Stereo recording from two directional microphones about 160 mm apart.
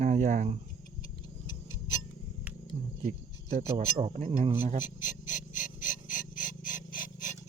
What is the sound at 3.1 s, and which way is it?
Speech, 45° right (ahead or behind).